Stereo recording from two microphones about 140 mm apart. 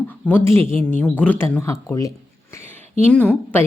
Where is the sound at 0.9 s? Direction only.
10° left (ahead or behind).